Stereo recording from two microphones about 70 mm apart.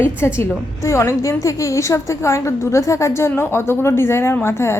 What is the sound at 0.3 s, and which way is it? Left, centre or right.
A woman's voice, left.